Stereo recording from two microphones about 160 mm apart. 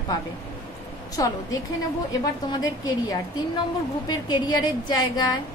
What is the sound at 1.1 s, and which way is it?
A woman's voice, 20° left (ahead or behind).